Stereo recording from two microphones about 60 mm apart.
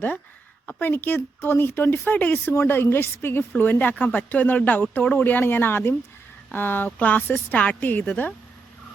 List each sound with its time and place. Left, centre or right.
0.8 s speech: left